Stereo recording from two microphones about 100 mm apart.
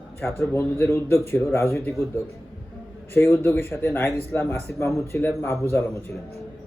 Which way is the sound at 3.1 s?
25° left (ahead or behind).